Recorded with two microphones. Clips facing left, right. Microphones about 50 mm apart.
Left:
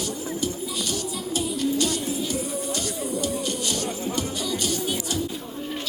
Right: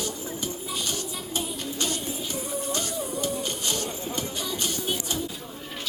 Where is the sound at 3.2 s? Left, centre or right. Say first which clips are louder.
Left 2 dB; right.